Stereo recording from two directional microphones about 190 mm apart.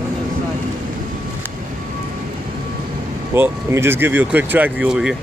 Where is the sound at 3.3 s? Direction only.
10° right (ahead or behind).